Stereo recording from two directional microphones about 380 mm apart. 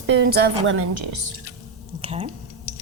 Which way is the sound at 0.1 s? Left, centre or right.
Right.